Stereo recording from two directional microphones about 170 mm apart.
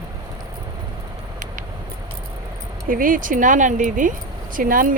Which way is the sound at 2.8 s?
55° right (ahead or behind).